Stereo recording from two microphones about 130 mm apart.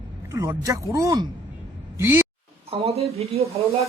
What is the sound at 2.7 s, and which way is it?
Speech, 50° right (ahead or behind).